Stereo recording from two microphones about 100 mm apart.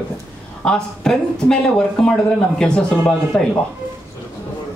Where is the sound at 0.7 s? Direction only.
5° left (ahead or behind).